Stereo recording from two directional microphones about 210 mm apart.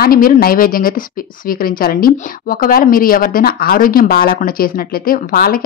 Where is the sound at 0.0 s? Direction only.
45° left (ahead or behind).